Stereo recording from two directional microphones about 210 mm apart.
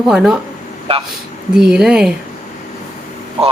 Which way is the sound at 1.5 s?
5° right (ahead or behind).